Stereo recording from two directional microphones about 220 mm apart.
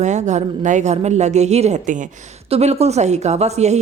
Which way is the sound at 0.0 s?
30° right (ahead or behind).